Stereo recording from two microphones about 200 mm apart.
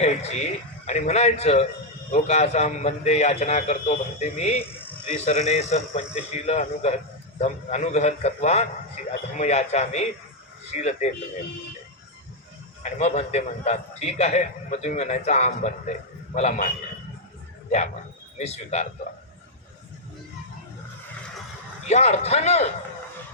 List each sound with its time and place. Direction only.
0.0 s a man's voice: 35° left (ahead or behind)
12.8 s a man's voice: 35° left (ahead or behind)
18.3 s a man's voice: 35° left (ahead or behind)
21.8 s a man's voice: 35° left (ahead or behind)